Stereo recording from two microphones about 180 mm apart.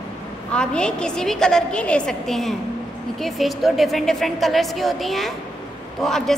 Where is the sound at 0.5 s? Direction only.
5° left (ahead or behind).